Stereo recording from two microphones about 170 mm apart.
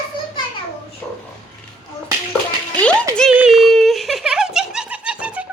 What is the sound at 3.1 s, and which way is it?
Speech, 5° left (ahead or behind).